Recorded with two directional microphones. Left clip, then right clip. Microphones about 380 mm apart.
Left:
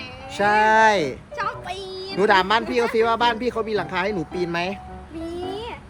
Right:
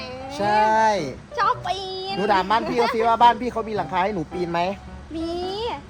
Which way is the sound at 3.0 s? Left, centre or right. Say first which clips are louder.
Right 5 dB; centre.